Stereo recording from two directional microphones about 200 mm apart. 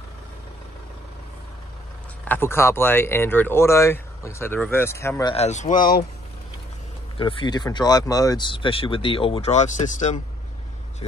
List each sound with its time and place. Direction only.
2.2 s speech: 10° left (ahead or behind)
5.3 s speech: 35° left (ahead or behind)
7.2 s speech: 25° left (ahead or behind)